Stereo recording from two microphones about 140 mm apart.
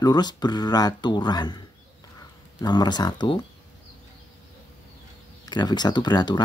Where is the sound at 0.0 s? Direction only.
30° left (ahead or behind).